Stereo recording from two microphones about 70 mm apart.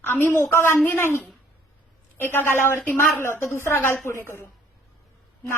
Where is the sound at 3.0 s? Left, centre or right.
Left.